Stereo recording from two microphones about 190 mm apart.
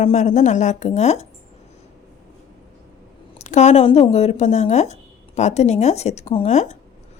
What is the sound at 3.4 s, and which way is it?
A woman's voice, 35° left (ahead or behind).